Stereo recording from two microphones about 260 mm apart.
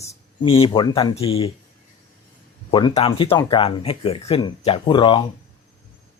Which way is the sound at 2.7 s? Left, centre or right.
Centre.